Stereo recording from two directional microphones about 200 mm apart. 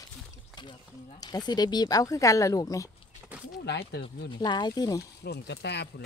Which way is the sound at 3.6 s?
55° left (ahead or behind).